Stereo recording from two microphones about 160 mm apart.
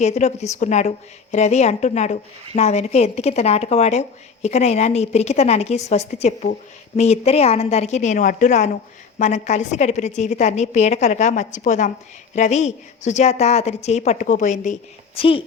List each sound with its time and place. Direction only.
0.0 s a woman's voice: 45° left (ahead or behind)
15.1 s a woman's voice: 35° left (ahead or behind)